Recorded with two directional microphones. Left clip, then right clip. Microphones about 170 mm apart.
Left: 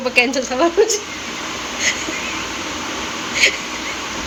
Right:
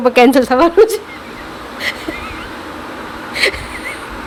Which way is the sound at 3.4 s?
75° right (ahead or behind).